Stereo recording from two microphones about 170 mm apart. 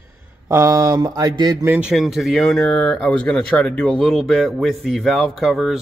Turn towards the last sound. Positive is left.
turn(degrees=0)  # may be behind; listen again after turning